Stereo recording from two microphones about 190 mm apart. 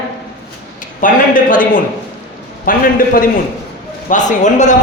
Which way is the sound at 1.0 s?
45° left (ahead or behind).